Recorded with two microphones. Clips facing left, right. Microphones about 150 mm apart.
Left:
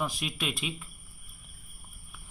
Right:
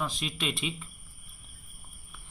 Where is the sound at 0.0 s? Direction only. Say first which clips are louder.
Even; 5° left (ahead or behind).